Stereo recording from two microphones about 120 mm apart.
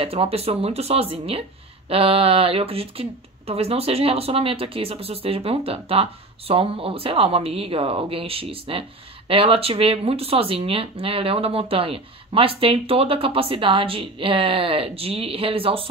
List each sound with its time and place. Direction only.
0.0 s speech: 55° right (ahead or behind)